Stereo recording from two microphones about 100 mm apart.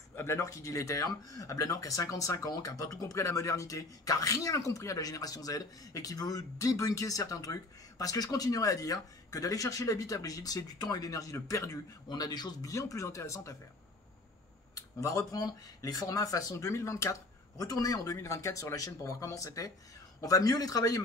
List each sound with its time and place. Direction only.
0.1 s speech: 25° left (ahead or behind)
12.1 s speech: 45° left (ahead or behind)
14.8 s speech: 35° left (ahead or behind)